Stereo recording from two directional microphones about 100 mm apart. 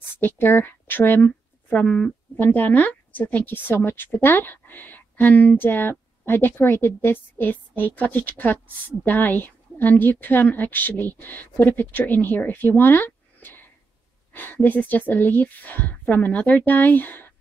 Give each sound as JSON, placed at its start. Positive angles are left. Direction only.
{"t": 0.2, "sound": "a woman's voice", "side_deg": 20}